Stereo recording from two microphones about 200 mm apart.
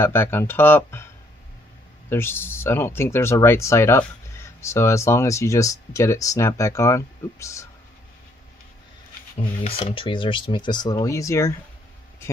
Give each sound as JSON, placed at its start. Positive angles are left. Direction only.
{"t": 0.0, "sound": "speech", "side_deg": 10}
{"t": 2.0, "sound": "speech", "side_deg": 10}
{"t": 9.6, "sound": "speech", "side_deg": 30}